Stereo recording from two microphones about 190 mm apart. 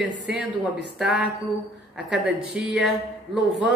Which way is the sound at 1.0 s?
Centre (ahead or behind).